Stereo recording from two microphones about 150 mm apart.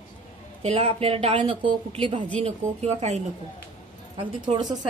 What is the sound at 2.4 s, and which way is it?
Speech, 45° right (ahead or behind).